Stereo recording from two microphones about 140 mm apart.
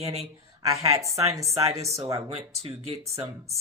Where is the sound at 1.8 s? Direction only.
50° right (ahead or behind).